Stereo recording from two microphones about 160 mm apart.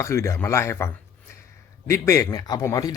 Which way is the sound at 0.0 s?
20° left (ahead or behind).